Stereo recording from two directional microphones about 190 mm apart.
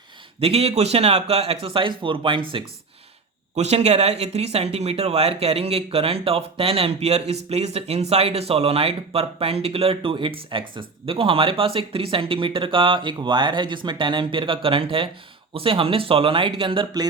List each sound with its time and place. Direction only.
0.3 s speech: 30° right (ahead or behind)